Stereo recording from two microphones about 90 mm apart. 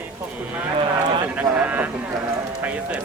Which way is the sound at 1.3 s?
15° right (ahead or behind).